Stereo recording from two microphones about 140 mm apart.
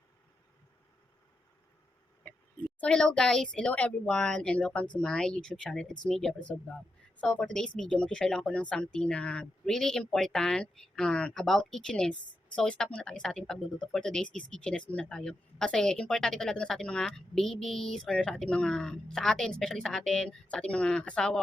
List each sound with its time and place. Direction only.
2.2 s speech: 5° left (ahead or behind)